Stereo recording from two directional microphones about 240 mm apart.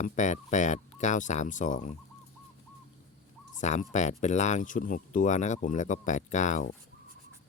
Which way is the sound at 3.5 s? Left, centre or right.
Left.